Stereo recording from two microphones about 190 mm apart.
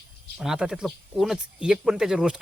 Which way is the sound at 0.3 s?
5° right (ahead or behind).